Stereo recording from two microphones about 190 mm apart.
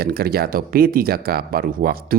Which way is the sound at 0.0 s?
55° right (ahead or behind).